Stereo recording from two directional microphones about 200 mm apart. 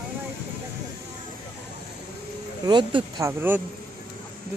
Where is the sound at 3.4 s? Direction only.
10° right (ahead or behind).